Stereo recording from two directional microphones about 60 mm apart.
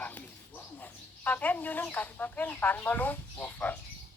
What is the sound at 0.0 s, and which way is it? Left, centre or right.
Speech, left.